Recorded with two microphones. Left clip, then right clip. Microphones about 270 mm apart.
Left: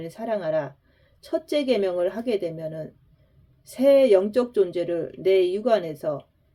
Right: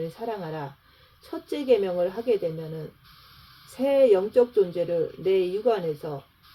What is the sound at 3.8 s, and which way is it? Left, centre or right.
Speech, left.